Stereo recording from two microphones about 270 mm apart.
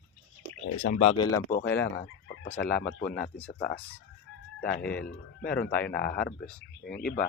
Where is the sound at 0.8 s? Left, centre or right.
Left; by 1.8 s centre.